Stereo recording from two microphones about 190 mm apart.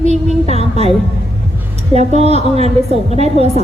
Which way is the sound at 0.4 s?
35° right (ahead or behind).